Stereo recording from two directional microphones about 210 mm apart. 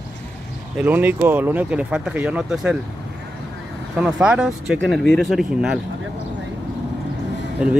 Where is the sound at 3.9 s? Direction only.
5° right (ahead or behind).